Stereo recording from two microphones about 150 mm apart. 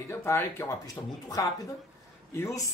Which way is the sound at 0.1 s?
15° left (ahead or behind).